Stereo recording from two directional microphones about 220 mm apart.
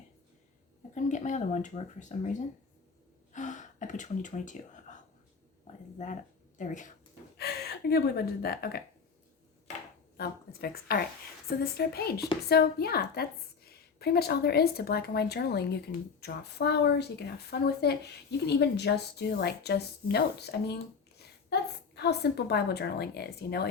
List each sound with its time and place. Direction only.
0.9 s speech: 35° left (ahead or behind)
3.3 s a sound: 35° left (ahead or behind)
6.6 s speech: 35° left (ahead or behind)
7.3 s speech: 45° left (ahead or behind)
10.2 s a woman's voice: 45° left (ahead or behind)